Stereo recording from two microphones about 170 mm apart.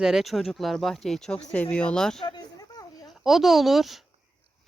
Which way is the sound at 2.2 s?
25° left (ahead or behind).